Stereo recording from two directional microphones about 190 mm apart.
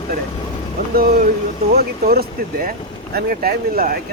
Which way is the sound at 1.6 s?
55° right (ahead or behind).